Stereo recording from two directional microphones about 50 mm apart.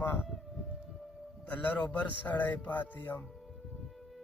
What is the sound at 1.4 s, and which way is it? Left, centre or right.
Speech, left.